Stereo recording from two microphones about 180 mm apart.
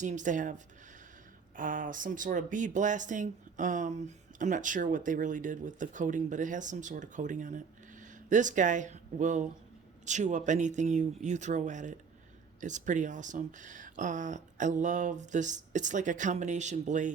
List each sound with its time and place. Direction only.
0.0 s speech: 45° right (ahead or behind)